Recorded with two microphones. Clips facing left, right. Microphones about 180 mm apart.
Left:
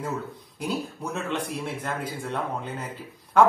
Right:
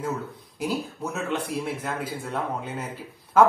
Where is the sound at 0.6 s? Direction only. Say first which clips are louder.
Right 2 dB; 5° right (ahead or behind).